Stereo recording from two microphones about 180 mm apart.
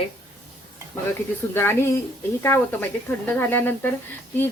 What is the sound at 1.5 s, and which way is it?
Speech, 15° left (ahead or behind).